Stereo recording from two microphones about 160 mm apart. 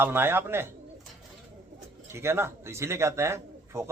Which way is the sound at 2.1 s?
15° right (ahead or behind).